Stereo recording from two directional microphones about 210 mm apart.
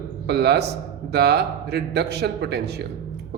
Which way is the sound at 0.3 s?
50° right (ahead or behind).